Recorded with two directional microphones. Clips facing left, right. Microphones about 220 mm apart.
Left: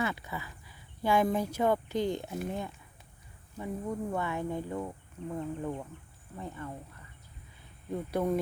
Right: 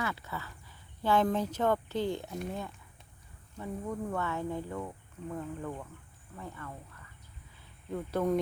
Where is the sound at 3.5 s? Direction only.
10° left (ahead or behind).